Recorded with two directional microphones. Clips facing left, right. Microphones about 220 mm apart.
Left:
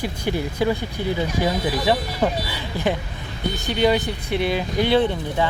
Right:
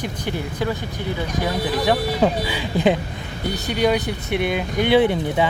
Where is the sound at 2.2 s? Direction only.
15° right (ahead or behind).